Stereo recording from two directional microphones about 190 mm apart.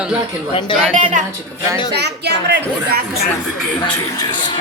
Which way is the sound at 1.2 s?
40° right (ahead or behind).